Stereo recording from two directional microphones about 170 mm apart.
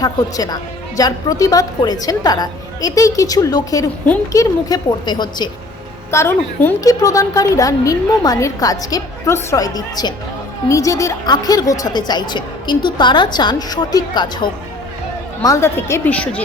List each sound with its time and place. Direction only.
0.0 s a woman's voice: 20° left (ahead or behind)
6.1 s a woman's voice: 15° left (ahead or behind)